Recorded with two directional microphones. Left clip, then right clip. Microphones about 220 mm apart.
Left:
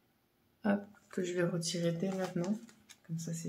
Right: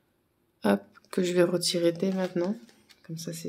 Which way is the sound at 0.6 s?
50° right (ahead or behind).